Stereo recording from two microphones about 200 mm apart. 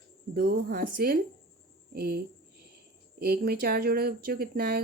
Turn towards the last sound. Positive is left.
turn(degrees=-50)  # may be behind; listen again after turning